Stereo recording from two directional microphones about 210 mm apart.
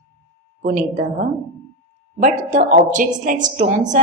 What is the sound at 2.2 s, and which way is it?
A woman's voice, 35° right (ahead or behind).